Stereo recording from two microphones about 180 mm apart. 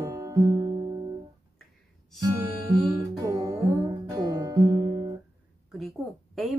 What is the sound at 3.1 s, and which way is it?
Music, 20° right (ahead or behind).